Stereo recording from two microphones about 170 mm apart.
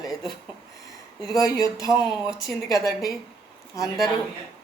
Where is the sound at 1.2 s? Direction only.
20° left (ahead or behind).